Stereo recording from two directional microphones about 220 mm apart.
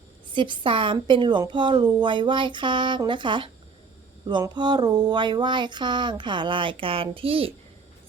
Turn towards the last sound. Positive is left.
turn(degrees=-25)  # may be behind; listen again after turning